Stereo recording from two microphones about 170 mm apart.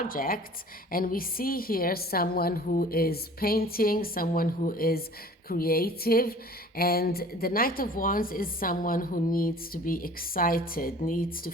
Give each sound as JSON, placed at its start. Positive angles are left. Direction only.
{"t": 0.0, "sound": "a woman's voice", "side_deg": 55}